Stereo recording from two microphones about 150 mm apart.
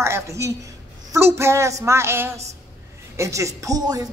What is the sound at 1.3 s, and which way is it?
Music, 20° right (ahead or behind).